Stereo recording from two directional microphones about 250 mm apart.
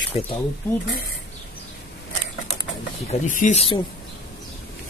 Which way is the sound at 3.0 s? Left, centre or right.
Left.